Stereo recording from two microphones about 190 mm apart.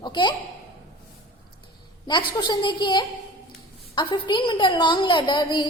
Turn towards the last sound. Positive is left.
turn(degrees=25)  # may be behind; listen again after turning